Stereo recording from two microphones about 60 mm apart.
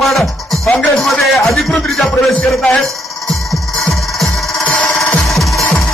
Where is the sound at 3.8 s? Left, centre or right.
Centre.